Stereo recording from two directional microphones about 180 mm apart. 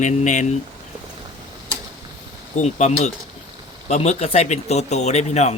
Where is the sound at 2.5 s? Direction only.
40° left (ahead or behind).